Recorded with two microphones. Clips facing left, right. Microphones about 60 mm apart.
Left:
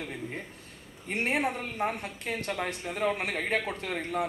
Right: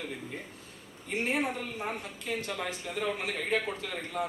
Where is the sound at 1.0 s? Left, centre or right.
Left.